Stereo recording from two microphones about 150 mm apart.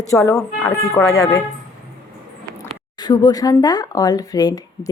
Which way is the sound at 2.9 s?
30° left (ahead or behind).